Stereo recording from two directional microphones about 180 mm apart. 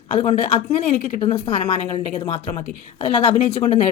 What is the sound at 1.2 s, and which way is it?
Speech, 30° left (ahead or behind).